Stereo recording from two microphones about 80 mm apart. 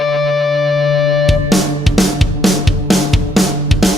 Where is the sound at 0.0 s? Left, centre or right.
Centre.